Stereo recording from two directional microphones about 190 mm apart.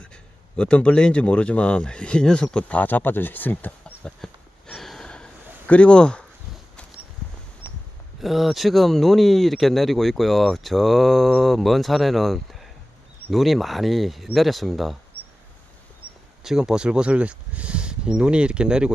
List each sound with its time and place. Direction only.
0.0 s speech: 5° left (ahead or behind)
7.6 s a sound: 15° left (ahead or behind)
8.2 s speech: centre (ahead or behind)
16.4 s speech: centre (ahead or behind)